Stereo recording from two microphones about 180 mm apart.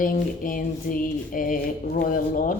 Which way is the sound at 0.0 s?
50° left (ahead or behind).